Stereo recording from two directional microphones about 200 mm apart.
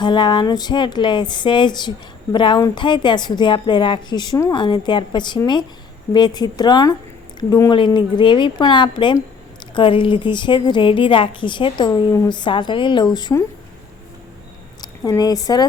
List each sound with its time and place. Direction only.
0.0 s a woman's voice: 20° left (ahead or behind)
14.8 s a woman's voice: 20° left (ahead or behind)